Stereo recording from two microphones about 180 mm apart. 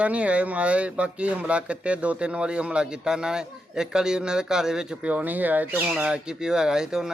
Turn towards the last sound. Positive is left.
turn(degrees=-5)  # may be behind; listen again after turning